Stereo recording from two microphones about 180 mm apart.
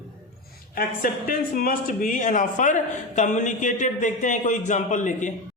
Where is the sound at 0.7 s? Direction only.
50° left (ahead or behind).